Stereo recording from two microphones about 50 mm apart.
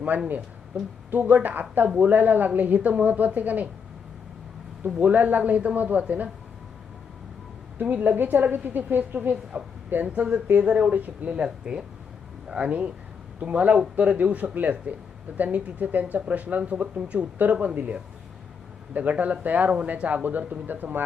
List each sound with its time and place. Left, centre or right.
0.1 s a woman's voice: right
4.9 s a woman's voice: right
7.8 s a woman's voice: right
11.3 s a woman's voice: centre; by 21.0 s right